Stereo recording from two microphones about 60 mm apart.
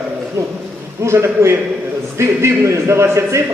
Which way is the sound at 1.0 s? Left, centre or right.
Right.